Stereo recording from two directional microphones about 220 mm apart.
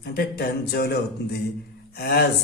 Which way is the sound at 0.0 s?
45° left (ahead or behind).